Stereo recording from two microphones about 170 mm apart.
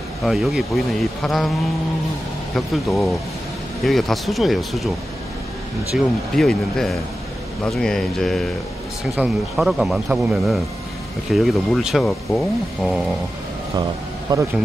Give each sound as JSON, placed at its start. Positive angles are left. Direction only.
{"t": 0.2, "sound": "speech", "side_deg": 0}
{"t": 2.5, "sound": "speech", "side_deg": 0}
{"t": 5.9, "sound": "speech", "side_deg": 0}
{"t": 14.3, "sound": "a man's voice", "side_deg": -25}